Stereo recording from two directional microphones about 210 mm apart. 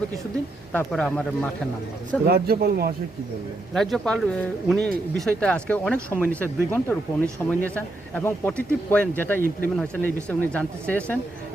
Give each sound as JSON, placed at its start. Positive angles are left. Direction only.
{"t": 0.7, "sound": "speech", "side_deg": 5}
{"t": 2.2, "sound": "speech", "side_deg": -45}
{"t": 3.8, "sound": "speech", "side_deg": 0}